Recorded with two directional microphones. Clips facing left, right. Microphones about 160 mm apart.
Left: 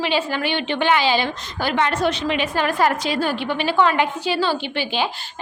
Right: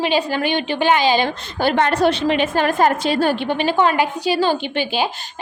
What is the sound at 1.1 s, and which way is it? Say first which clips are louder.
Speech: right 3 dB; 50° right (ahead or behind).